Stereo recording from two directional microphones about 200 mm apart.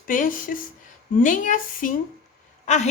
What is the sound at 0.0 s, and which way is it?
Speech, 40° left (ahead or behind).